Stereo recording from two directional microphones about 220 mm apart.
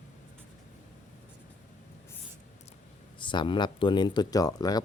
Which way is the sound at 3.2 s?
20° left (ahead or behind).